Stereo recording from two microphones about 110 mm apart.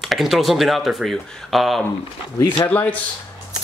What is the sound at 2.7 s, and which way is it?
Speech, 15° left (ahead or behind).